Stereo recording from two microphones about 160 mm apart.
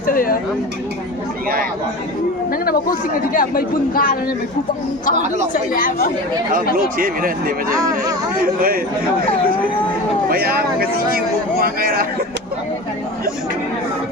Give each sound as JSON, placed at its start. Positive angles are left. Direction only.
{"t": 0.1, "sound": "speech", "side_deg": 60}
{"t": 3.3, "sound": "speech", "side_deg": 60}
{"t": 5.7, "sound": "speech", "side_deg": 60}
{"t": 6.7, "sound": "speech", "side_deg": -60}
{"t": 7.7, "sound": "speech", "side_deg": -20}
{"t": 8.4, "sound": "speech", "side_deg": -65}
{"t": 10.2, "sound": "speech", "side_deg": -70}